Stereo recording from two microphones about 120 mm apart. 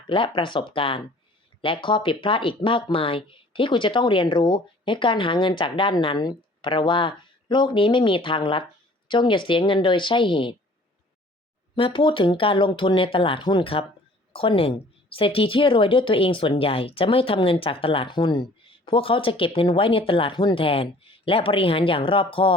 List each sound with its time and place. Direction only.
0.1 s speech: 45° left (ahead or behind)
11.7 s speech: 45° left (ahead or behind)